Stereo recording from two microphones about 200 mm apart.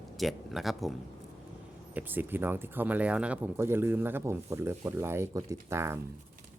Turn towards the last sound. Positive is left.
turn(degrees=-15)  # may be behind; listen again after turning